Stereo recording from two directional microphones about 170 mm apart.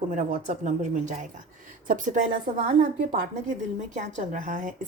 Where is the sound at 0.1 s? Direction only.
45° right (ahead or behind).